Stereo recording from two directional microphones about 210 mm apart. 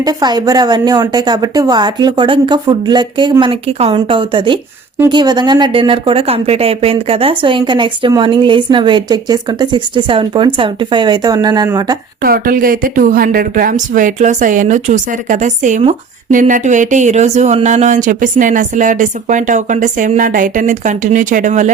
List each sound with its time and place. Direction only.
0.0 s speech: 20° right (ahead or behind)
12.2 s a woman's voice: 45° right (ahead or behind)